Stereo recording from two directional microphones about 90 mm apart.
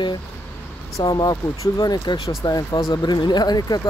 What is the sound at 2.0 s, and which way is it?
Speech, 70° left (ahead or behind).